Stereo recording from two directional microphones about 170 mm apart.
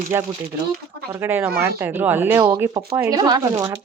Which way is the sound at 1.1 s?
10° right (ahead or behind).